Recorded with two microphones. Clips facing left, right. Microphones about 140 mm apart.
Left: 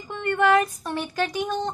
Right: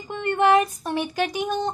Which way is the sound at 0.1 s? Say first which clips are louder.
Right 1 dB; 20° right (ahead or behind).